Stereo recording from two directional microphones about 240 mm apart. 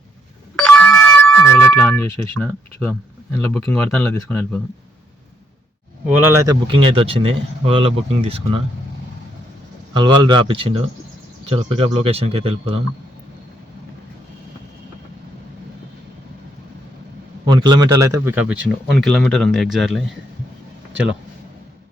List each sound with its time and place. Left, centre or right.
0.5 s a sound: centre
3.3 s speech: centre
6.1 s speech: centre; by 8.6 s right
9.9 s speech: centre
17.4 s speech: centre